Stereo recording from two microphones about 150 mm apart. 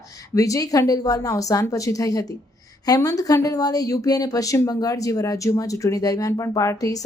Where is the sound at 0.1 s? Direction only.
25° left (ahead or behind).